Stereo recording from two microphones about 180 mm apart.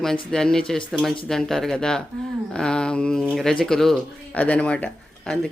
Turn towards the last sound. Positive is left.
turn(degrees=5)  # may be behind; listen again after turning